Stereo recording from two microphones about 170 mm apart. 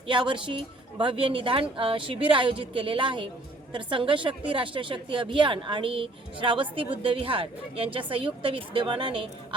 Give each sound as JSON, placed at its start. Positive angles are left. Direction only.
{"t": 0.1, "sound": "a woman's voice", "side_deg": -30}